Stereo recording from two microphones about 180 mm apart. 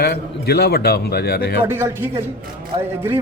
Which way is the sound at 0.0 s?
65° left (ahead or behind).